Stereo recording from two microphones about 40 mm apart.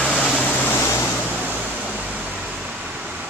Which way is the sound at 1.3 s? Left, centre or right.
Right.